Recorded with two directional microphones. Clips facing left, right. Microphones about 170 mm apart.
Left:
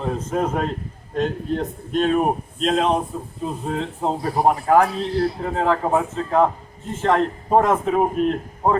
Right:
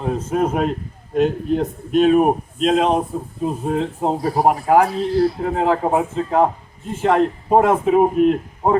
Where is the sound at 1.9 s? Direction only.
10° right (ahead or behind).